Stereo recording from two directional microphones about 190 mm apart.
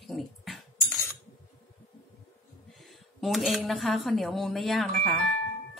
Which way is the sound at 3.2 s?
Centre (ahead or behind).